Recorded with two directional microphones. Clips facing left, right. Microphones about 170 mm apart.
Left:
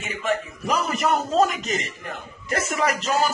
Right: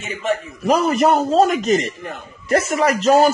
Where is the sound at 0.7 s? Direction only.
35° right (ahead or behind).